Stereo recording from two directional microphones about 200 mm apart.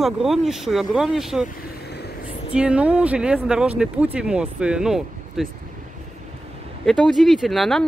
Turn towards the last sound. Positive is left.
turn(degrees=0)  # may be behind; listen again after turning